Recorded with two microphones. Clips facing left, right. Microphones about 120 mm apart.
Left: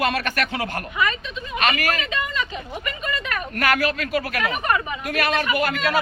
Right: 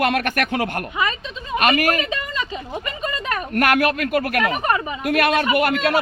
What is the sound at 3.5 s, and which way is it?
Speech, 55° right (ahead or behind).